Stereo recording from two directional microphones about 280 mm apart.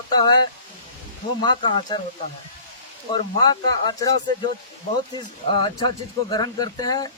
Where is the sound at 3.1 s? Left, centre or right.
Centre.